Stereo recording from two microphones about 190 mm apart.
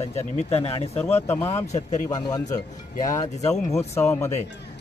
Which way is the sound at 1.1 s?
15° left (ahead or behind).